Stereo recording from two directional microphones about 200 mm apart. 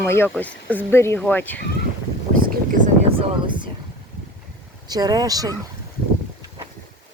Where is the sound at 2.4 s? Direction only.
40° right (ahead or behind).